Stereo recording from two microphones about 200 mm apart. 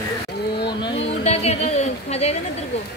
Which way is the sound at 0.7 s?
25° left (ahead or behind).